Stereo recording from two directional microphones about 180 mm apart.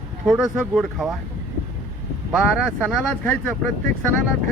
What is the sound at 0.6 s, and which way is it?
Speech, centre (ahead or behind).